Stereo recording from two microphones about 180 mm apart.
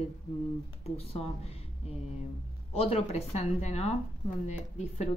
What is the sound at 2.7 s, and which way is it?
A woman's voice, 35° left (ahead or behind).